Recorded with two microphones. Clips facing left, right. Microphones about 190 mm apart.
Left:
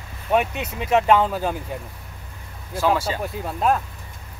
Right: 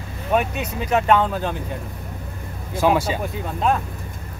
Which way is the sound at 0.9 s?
5° left (ahead or behind).